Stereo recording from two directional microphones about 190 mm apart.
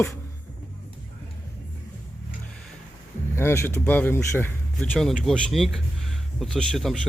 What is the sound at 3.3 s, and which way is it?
Speech, 15° left (ahead or behind).